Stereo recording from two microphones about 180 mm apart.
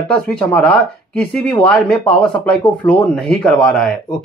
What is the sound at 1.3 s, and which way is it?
Speech, 5° left (ahead or behind).